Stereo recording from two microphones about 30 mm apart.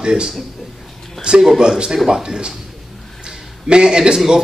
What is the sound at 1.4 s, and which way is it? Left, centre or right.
Speech, centre.